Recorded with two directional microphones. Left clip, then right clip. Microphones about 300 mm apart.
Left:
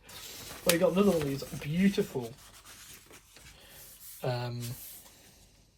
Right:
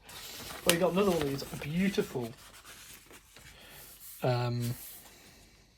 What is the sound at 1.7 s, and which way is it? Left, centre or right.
Speech, right.